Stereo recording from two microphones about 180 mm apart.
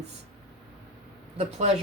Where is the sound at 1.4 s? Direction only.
40° right (ahead or behind).